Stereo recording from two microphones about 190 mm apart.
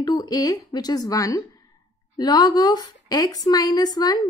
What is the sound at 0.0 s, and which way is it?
A woman's voice, 20° left (ahead or behind).